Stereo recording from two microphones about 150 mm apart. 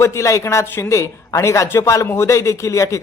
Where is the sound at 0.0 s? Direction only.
20° left (ahead or behind).